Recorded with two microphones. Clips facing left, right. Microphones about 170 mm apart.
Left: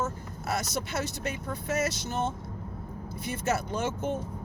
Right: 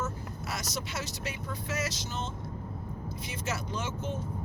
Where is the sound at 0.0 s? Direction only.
55° left (ahead or behind).